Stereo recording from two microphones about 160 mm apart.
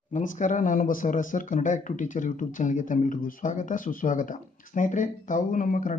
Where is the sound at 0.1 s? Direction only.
55° left (ahead or behind).